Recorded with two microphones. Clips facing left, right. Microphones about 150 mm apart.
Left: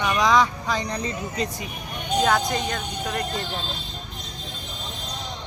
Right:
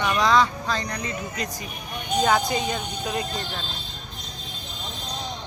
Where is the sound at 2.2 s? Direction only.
5° right (ahead or behind).